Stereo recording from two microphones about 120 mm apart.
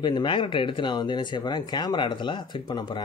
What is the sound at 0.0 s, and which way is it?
Speech, 40° left (ahead or behind).